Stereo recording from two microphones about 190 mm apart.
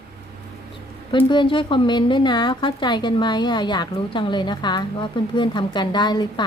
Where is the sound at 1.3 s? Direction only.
25° left (ahead or behind).